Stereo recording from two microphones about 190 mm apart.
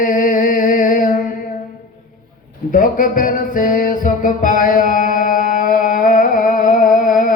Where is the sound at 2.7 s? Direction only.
45° left (ahead or behind).